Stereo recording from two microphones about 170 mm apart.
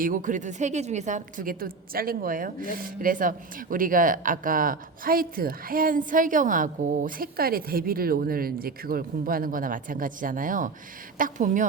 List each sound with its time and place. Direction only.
0.0 s a woman's voice: 50° right (ahead or behind)